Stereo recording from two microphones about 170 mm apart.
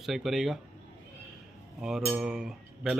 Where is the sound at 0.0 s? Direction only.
Centre (ahead or behind).